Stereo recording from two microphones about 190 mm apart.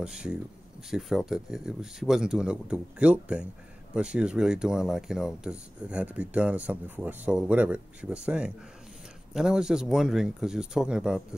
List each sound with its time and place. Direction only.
0.0 s speech: 5° right (ahead or behind)